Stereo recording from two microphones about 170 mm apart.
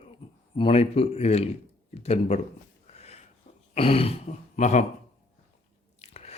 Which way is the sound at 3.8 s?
35° left (ahead or behind).